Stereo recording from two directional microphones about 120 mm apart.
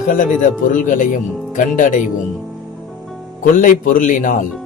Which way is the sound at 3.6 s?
90° left.